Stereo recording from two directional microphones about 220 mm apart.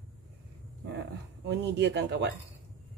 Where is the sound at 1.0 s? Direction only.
50° right (ahead or behind).